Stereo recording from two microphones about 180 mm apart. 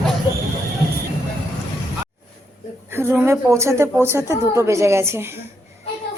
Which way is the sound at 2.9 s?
15° right (ahead or behind).